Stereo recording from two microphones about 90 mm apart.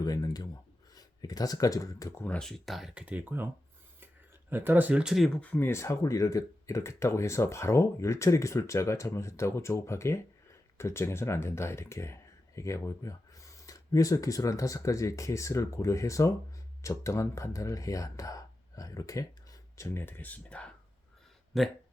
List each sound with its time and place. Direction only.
0.0 s a sound: 45° left (ahead or behind)
0.9 s speech: 45° left (ahead or behind)
2.4 s speech: 5° left (ahead or behind)
2.9 s speech: 15° right (ahead or behind)
4.0 s a sound: 25° right (ahead or behind)
5.0 s speech: centre (ahead or behind)
5.4 s speech: 20° left (ahead or behind)
21.5 s speech: centre (ahead or behind)